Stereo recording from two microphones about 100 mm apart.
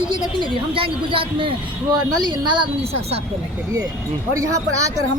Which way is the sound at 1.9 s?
45° right (ahead or behind).